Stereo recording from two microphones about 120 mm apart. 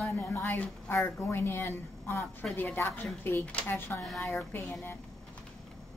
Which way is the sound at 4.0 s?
Centre (ahead or behind).